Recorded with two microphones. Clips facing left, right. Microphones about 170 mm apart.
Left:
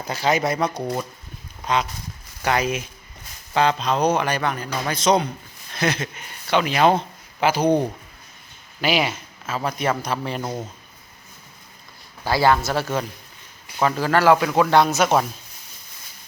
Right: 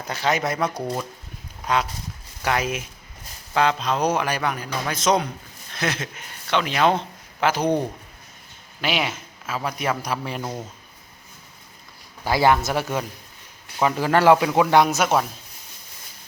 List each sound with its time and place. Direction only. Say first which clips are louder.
0.0 s a man's voice: left 2 dB; centre (ahead or behind)
10.4 s speech: left 2 dB; 10° left (ahead or behind)
12.2 s speech: even; 20° right (ahead or behind)